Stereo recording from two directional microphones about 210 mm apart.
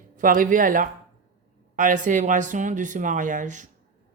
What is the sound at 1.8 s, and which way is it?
Speech, 40° right (ahead or behind).